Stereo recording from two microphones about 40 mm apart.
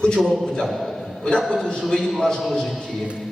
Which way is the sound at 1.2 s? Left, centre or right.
Left.